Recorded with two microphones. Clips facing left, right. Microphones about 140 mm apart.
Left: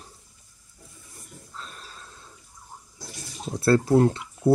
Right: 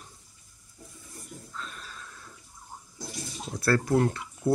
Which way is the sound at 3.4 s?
25° left (ahead or behind).